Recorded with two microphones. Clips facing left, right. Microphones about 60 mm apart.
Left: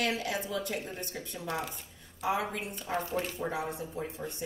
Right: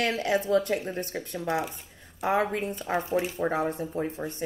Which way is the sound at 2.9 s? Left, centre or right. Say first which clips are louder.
Right 4 dB; right.